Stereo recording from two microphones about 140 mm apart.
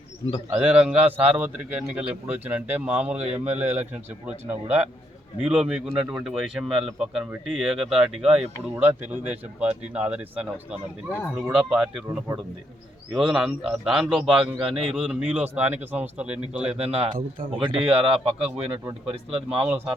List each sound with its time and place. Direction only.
0.5 s a man's voice: 10° right (ahead or behind)
16.7 s speech: 45° right (ahead or behind)
18.3 s a man's voice: 10° right (ahead or behind)
19.1 s speech: 45° right (ahead or behind)
19.6 s a man's voice: 15° right (ahead or behind)